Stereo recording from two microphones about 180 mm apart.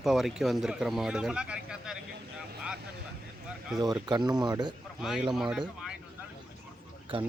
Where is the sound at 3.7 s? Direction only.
20° right (ahead or behind).